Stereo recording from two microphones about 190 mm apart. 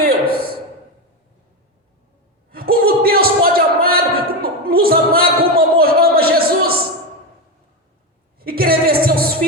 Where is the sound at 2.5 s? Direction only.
50° right (ahead or behind).